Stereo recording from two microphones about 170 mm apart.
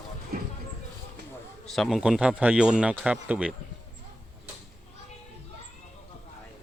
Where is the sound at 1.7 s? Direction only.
Centre (ahead or behind).